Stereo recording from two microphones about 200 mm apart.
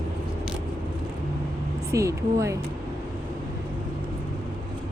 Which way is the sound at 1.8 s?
15° right (ahead or behind).